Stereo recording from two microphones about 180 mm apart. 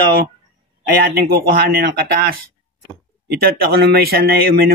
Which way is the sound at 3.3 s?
60° right (ahead or behind).